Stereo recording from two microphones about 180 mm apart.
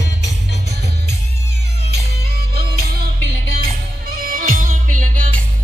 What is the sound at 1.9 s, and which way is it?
Music, 60° right (ahead or behind).